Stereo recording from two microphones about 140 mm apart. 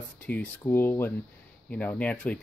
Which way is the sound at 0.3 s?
10° left (ahead or behind).